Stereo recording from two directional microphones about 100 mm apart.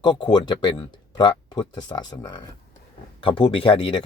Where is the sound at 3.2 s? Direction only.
60° left (ahead or behind).